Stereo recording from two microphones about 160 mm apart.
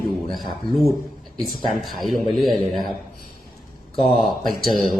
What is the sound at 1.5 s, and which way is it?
Speech, centre (ahead or behind).